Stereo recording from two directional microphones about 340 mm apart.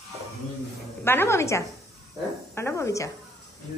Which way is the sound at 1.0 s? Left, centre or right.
Centre.